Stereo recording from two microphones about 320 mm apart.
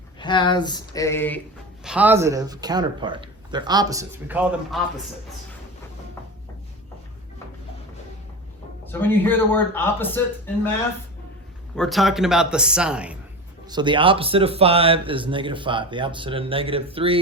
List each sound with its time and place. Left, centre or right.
0.2 s a man's voice: centre
1.8 s speech: centre
8.9 s a man's voice: centre
11.8 s speech: centre
13.7 s speech: centre